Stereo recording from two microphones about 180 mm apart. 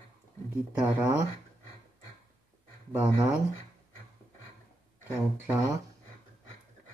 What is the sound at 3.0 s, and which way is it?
Speech, 15° right (ahead or behind).